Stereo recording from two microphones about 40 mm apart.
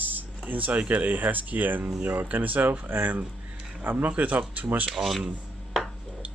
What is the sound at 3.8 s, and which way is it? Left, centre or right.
Speech, right.